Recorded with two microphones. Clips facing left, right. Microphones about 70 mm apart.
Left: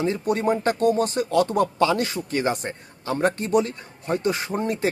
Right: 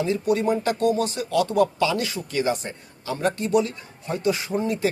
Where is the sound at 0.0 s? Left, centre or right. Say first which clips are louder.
Right 1 dB; left.